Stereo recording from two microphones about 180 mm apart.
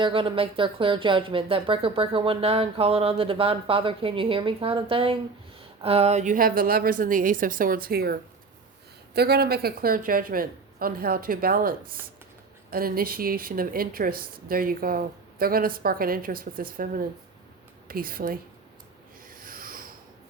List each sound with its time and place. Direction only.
0.0 s a woman's voice: 30° right (ahead or behind); by 11.7 s 55° right (ahead or behind)
12.7 s a woman's voice: 55° right (ahead or behind)
19.3 s rub: 50° right (ahead or behind)